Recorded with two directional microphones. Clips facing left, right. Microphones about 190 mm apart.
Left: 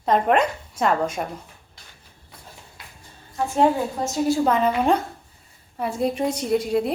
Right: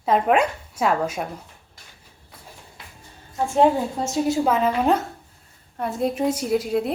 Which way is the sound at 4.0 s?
20° right (ahead or behind).